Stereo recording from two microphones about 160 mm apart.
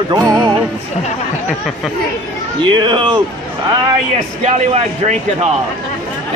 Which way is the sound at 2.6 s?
30° right (ahead or behind).